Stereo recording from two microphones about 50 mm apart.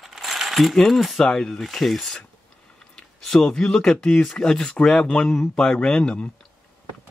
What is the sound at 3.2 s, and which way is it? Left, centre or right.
Speech, centre.